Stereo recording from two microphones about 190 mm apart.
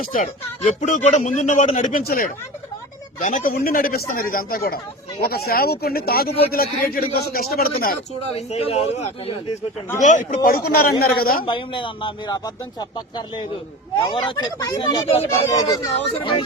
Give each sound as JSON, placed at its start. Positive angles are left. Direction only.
{"t": 0.0, "sound": "a man's voice", "side_deg": 45}
{"t": 8.4, "sound": "speech", "side_deg": 35}
{"t": 10.0, "sound": "a man's voice", "side_deg": 40}
{"t": 11.4, "sound": "speech", "side_deg": 25}